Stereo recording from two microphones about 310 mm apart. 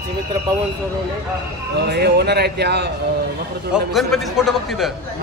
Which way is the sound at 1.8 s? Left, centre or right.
Right.